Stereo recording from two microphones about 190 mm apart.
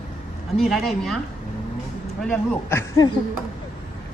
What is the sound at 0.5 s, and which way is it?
Speech, centre (ahead or behind).